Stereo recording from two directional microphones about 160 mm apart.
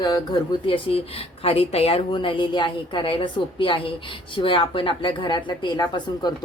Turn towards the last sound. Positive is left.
turn(degrees=25)  # may be behind; listen again after turning